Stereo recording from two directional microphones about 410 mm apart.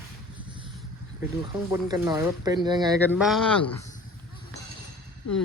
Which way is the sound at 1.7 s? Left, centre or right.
Centre.